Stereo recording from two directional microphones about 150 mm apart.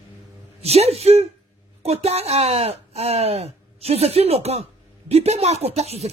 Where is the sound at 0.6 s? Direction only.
45° right (ahead or behind).